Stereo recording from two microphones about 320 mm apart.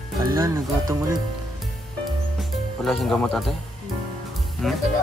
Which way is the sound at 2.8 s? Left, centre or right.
Centre.